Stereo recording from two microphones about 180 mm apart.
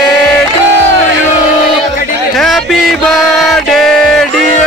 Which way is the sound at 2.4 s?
Centre (ahead or behind).